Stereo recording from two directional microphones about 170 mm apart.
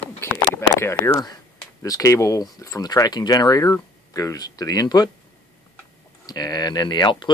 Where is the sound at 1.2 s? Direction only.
20° left (ahead or behind).